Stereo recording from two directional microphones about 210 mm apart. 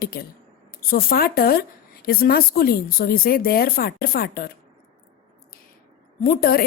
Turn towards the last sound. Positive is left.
turn(degrees=45)  # may be behind; listen again after turning